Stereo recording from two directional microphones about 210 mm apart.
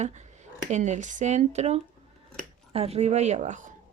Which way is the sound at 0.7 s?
35° right (ahead or behind).